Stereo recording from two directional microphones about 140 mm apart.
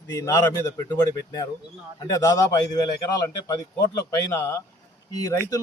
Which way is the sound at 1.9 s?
25° left (ahead or behind).